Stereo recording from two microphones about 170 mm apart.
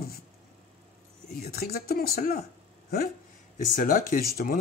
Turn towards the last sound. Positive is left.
turn(degrees=60)  # may be behind; listen again after turning